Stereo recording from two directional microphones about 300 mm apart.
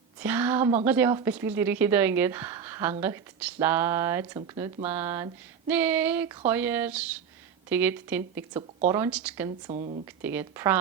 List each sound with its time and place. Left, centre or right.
0.2 s speech: centre
9.6 s speech: right
10.2 s speech: centre